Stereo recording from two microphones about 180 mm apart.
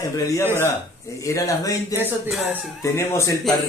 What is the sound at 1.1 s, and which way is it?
Speech, 15° left (ahead or behind).